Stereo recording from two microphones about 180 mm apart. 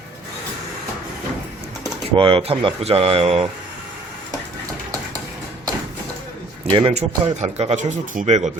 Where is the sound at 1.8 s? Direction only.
30° right (ahead or behind).